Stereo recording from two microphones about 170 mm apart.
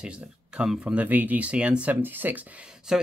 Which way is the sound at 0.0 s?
5° right (ahead or behind).